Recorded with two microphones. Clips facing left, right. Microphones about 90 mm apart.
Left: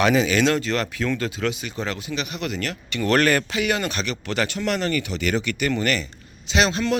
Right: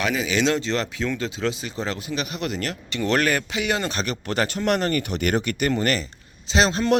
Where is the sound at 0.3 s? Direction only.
20° right (ahead or behind); by 3.0 s 35° right (ahead or behind).